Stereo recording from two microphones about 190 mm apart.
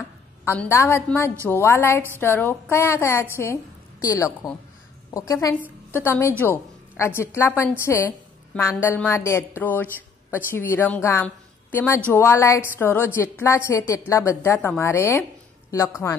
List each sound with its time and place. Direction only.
0.5 s a woman's voice: 10° left (ahead or behind)